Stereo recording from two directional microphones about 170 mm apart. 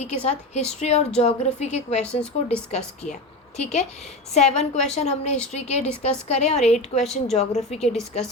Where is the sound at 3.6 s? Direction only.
40° left (ahead or behind).